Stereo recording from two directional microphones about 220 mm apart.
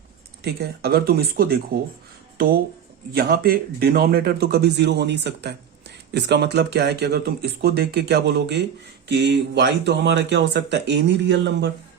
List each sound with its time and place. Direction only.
0.4 s speech: 45° right (ahead or behind)
3.2 s speech: 45° right (ahead or behind)